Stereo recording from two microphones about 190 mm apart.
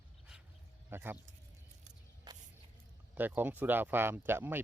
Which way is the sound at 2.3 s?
20° right (ahead or behind).